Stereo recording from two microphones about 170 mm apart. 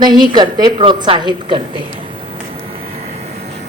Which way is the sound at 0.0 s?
25° right (ahead or behind).